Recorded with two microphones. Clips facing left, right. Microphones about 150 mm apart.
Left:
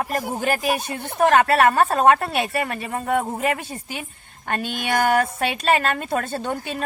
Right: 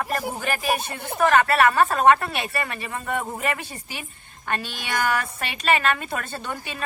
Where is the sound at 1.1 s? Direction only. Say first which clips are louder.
Left 2 dB; 45° left (ahead or behind).